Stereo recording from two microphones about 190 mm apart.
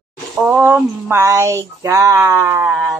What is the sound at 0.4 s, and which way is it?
Speech, 10° right (ahead or behind).